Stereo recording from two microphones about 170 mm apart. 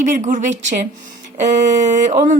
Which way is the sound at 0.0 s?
50° right (ahead or behind).